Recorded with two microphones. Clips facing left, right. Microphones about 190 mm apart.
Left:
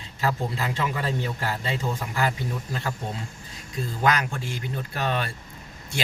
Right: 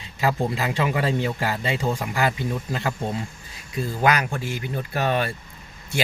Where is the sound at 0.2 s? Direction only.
90° right.